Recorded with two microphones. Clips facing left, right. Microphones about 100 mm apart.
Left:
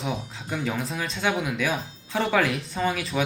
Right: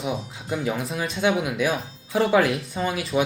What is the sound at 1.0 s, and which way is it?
Speech, 15° right (ahead or behind).